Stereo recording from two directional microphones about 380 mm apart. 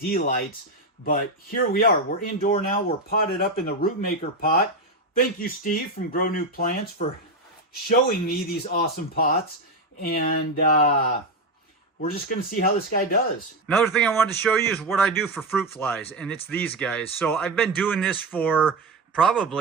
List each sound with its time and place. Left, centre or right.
0.1 s speech: left
7.9 s speech: left
13.7 s a man's voice: centre